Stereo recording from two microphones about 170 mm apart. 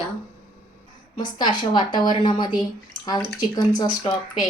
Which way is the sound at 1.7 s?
25° left (ahead or behind).